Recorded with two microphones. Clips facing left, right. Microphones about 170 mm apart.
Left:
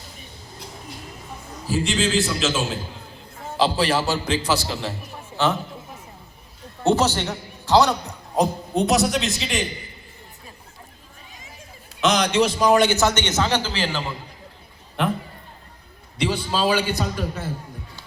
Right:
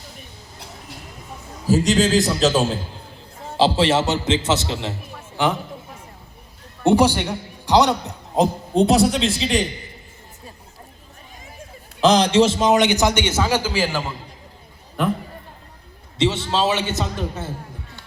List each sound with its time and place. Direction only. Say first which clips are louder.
1.6 s a man's voice: right 6 dB; 40° right (ahead or behind)
3.6 s a man's voice: right 3 dB; 25° right (ahead or behind)
6.8 s a man's voice: right 4 dB; 15° right (ahead or behind)
8.4 s a man's voice: right 3 dB; 30° right (ahead or behind)
11.9 s a man's voice: right 4 dB; 30° right (ahead or behind); by 14.0 s 10° right (ahead or behind)
16.1 s a man's voice: right 3 dB; 25° right (ahead or behind)